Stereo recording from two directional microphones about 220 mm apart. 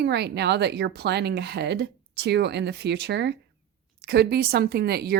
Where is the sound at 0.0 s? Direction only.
50° right (ahead or behind).